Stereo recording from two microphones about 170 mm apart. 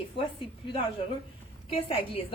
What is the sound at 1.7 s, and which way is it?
Speech, 30° left (ahead or behind).